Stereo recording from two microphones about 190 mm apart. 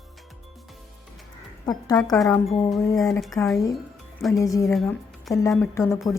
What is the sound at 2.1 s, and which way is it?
Speech, centre (ahead or behind).